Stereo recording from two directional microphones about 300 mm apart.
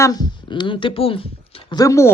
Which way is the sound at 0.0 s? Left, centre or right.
Centre.